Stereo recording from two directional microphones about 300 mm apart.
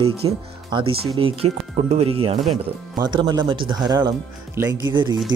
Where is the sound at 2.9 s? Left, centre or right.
Centre.